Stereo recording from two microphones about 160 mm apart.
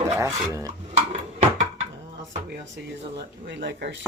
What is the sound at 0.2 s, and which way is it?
Speech, 20° right (ahead or behind).